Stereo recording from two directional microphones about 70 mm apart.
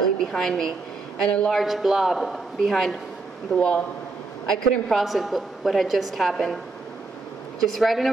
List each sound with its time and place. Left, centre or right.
0.2 s a woman's voice: centre
1.5 s a woman's voice: centre
3.5 s a woman's voice: centre
4.5 s a woman's voice: centre
7.7 s a woman's voice: centre